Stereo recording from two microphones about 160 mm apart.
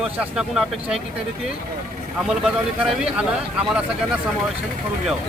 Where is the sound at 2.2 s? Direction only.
5° right (ahead or behind).